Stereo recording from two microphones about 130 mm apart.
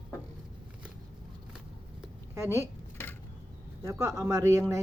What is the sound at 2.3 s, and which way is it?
Speech, 20° right (ahead or behind).